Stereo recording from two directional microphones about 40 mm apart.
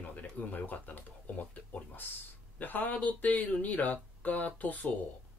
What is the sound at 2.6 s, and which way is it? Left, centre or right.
Speech, left.